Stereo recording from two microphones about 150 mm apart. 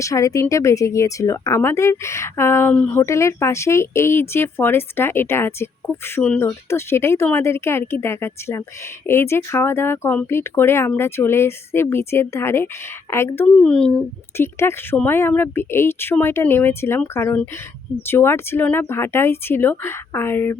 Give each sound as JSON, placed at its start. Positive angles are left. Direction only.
{"t": 0.0, "sound": "a woman's voice", "side_deg": 20}
{"t": 13.6, "sound": "speech", "side_deg": 5}
{"t": 14.3, "sound": "speech", "side_deg": 15}